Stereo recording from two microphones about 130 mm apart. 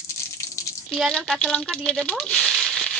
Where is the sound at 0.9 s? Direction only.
5° left (ahead or behind).